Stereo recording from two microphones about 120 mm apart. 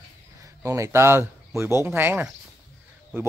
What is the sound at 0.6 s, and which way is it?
Speech, 25° right (ahead or behind).